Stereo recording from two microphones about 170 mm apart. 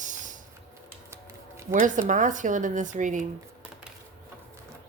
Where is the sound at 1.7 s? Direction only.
50° right (ahead or behind).